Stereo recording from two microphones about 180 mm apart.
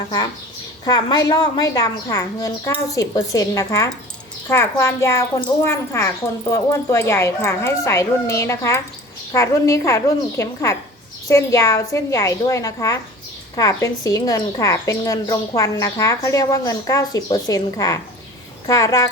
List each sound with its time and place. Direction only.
0.9 s a woman's voice: 25° left (ahead or behind)